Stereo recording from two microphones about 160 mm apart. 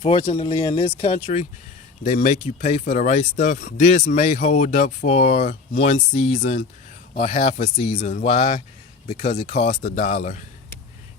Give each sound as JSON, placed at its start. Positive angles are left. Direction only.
{"t": 0.0, "sound": "speech", "side_deg": 35}